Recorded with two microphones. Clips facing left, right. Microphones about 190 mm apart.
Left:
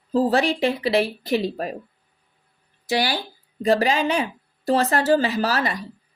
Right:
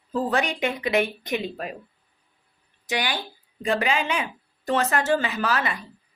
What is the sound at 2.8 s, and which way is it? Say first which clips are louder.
Speech: left 5 dB; 35° left (ahead or behind).